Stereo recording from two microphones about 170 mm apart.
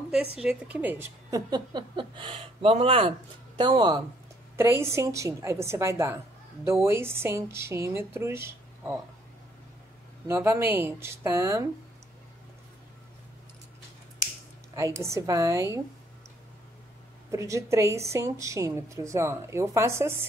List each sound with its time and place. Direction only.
0.1 s a woman's voice: 5° right (ahead or behind); by 4.0 s 25° right (ahead or behind)
4.6 s a woman's voice: 15° right (ahead or behind)
10.2 s a woman's voice: 15° right (ahead or behind)
14.8 s a woman's voice: 15° right (ahead or behind)
17.3 s a woman's voice: 15° right (ahead or behind)